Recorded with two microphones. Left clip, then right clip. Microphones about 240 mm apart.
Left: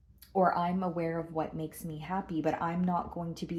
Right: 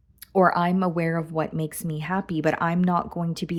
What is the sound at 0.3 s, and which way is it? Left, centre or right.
Speech, right.